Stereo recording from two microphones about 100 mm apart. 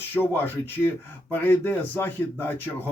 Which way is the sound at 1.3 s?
20° left (ahead or behind).